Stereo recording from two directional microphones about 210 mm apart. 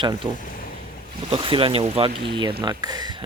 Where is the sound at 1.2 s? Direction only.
25° right (ahead or behind).